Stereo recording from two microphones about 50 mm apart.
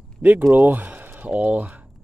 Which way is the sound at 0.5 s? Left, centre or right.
Right.